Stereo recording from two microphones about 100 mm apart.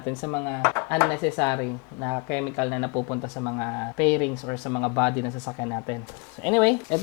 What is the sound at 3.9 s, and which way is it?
Speech, 10° left (ahead or behind).